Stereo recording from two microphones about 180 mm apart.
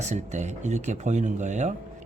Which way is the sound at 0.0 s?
40° right (ahead or behind).